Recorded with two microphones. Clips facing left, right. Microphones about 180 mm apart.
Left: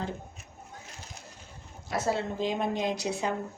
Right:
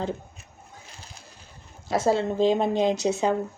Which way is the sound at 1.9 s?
30° right (ahead or behind).